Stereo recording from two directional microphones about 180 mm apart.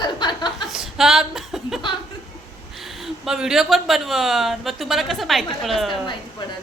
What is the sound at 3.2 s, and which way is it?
Speech, 5° right (ahead or behind).